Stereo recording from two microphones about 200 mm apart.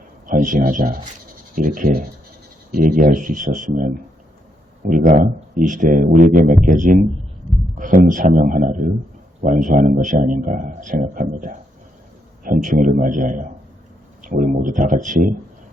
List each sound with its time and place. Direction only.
0.3 s a man's voice: 40° right (ahead or behind)
5.0 s a man's voice: 40° right (ahead or behind)
7.5 s a sound: centre (ahead or behind)
7.8 s a man's voice: 40° right (ahead or behind)